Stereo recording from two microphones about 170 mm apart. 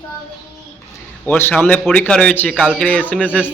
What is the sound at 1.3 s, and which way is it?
A man's voice, 10° left (ahead or behind).